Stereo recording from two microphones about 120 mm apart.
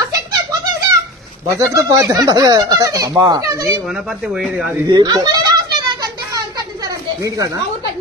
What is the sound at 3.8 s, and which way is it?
Speech, 5° right (ahead or behind).